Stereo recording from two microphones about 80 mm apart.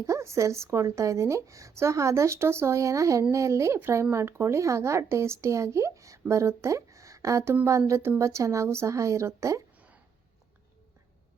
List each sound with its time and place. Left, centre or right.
0.0 s speech: right